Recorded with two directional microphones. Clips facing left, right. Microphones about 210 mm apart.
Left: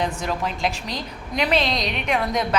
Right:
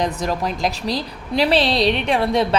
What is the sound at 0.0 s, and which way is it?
A woman's voice, 40° right (ahead or behind).